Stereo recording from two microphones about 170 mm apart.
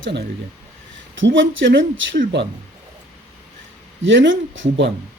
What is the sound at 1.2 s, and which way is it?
Speech, 90° right.